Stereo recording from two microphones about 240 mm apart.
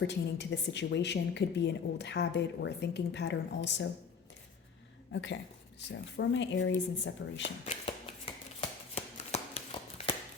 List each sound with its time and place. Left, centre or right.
0.0 s a woman's voice: left
5.1 s a woman's voice: left
7.6 s shuffling cards: left
9.0 s a sound: left